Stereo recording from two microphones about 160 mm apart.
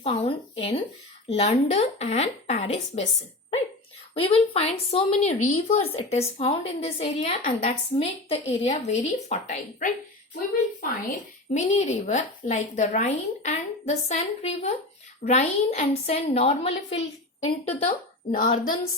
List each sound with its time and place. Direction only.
0.0 s speech: 35° left (ahead or behind)
4.1 s a woman's voice: 35° left (ahead or behind); by 18.7 s 55° left (ahead or behind)